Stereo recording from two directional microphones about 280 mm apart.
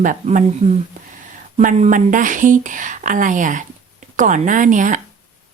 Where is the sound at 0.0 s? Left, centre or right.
Right.